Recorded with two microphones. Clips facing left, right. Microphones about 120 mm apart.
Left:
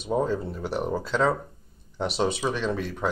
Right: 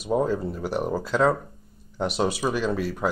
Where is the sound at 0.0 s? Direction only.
5° right (ahead or behind).